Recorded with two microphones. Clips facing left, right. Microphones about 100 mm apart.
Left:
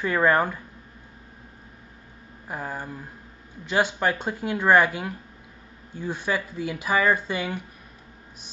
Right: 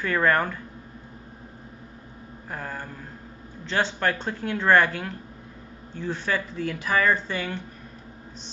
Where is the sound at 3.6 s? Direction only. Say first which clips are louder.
Left 2 dB; 10° left (ahead or behind).